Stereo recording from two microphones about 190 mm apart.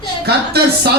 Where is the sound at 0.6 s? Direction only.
55° right (ahead or behind).